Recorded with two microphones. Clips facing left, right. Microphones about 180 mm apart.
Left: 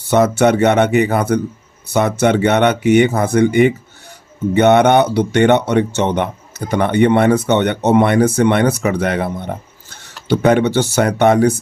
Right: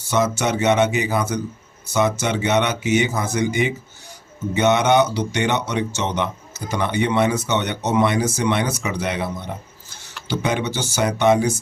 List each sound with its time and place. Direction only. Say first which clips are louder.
0.0 s speech: left 8 dB; 60° left (ahead or behind)